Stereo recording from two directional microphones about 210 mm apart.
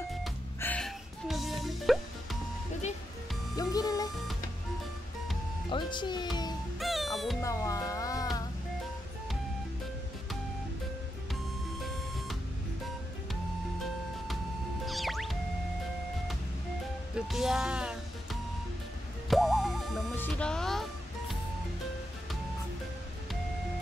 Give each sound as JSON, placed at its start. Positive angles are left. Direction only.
{"t": 0.6, "sound": "music", "side_deg": 5}
{"t": 3.5, "sound": "music", "side_deg": 20}
{"t": 5.7, "sound": "music", "side_deg": 20}
{"t": 6.8, "sound": "music", "side_deg": 0}
{"t": 7.4, "sound": "music", "side_deg": 15}
{"t": 14.9, "sound": "music", "side_deg": 0}
{"t": 17.1, "sound": "music", "side_deg": 0}